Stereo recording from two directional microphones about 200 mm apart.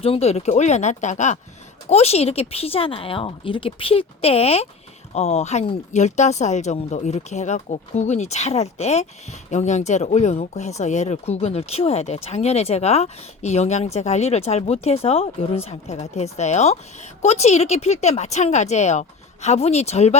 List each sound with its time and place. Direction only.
0.0 s speech: 30° left (ahead or behind)